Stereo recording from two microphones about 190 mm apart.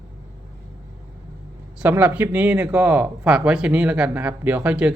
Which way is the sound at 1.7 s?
5° right (ahead or behind).